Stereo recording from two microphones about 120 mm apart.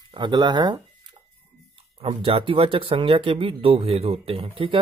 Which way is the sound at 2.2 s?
50° right (ahead or behind).